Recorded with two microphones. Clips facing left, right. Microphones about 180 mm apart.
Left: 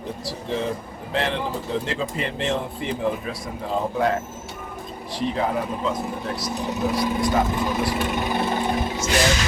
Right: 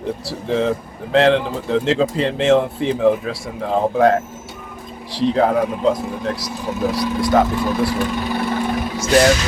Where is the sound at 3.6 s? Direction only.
65° right (ahead or behind).